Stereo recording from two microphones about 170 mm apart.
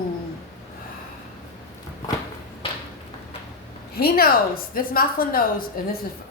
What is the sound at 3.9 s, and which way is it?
A woman's voice, 60° left (ahead or behind).